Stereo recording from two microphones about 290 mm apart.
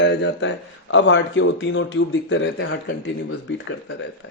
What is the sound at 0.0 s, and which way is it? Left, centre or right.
Speech, left.